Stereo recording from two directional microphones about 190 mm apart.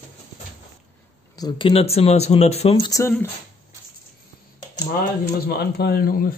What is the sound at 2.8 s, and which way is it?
Speech, 20° left (ahead or behind).